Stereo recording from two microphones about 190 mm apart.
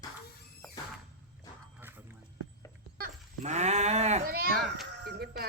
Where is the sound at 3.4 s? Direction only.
35° right (ahead or behind).